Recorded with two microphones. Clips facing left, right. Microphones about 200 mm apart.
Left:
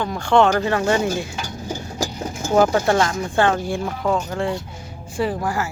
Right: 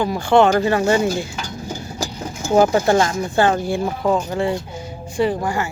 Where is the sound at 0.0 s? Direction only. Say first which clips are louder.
Right 2 dB; 5° right (ahead or behind).